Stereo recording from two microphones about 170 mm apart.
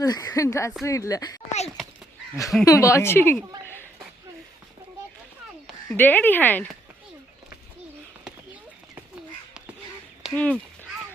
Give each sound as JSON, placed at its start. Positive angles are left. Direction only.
{"t": 0.0, "sound": "speech", "side_deg": 20}
{"t": 2.3, "sound": "speech", "side_deg": 20}
{"t": 5.6, "sound": "speech", "side_deg": 10}
{"t": 10.3, "sound": "speech", "side_deg": 10}